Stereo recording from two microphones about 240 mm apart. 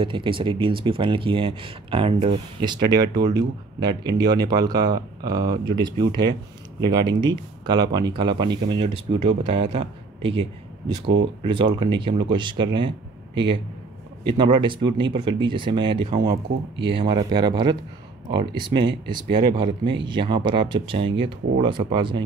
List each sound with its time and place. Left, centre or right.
0.0 s a man's voice: right